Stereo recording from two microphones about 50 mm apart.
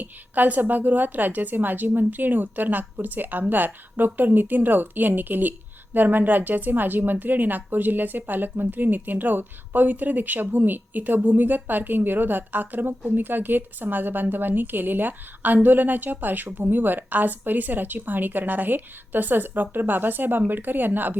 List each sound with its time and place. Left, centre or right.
0.0 s speech: right